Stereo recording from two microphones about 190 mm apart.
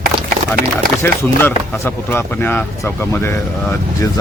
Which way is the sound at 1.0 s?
10° left (ahead or behind).